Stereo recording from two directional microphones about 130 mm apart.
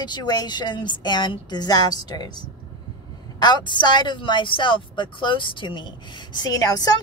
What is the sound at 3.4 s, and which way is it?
Speech, 35° left (ahead or behind).